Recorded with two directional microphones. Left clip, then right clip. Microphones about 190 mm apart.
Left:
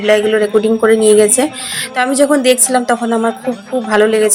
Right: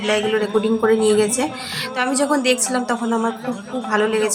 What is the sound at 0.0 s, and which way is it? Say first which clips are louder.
Speech: left 8 dB; 20° left (ahead or behind).